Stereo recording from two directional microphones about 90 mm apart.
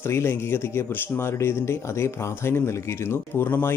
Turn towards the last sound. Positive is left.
turn(degrees=25)  # may be behind; listen again after turning